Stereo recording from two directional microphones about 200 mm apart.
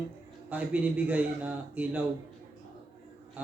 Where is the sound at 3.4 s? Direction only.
10° right (ahead or behind).